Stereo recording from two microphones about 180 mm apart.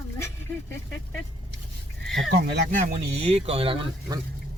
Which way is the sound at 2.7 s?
40° right (ahead or behind).